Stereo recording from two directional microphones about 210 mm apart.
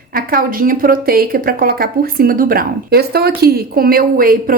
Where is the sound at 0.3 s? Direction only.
45° right (ahead or behind).